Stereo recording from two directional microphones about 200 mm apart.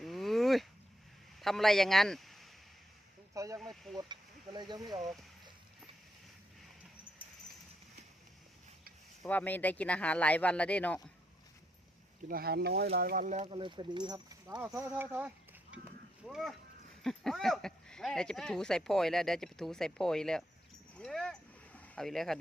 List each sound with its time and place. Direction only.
0.0 s a sound: centre (ahead or behind)
1.4 s a man's voice: centre (ahead or behind)
3.3 s speech: 15° right (ahead or behind)
3.6 s speech: centre (ahead or behind)
3.9 s speech: 20° right (ahead or behind)
9.2 s speech: 10° left (ahead or behind)
12.3 s speech: 50° right (ahead or behind); by 20.4 s 5° left (ahead or behind)
20.9 s a sound: 5° left (ahead or behind)